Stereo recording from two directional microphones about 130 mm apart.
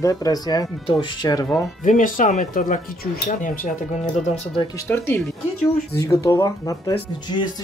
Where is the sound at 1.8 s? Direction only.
85° left.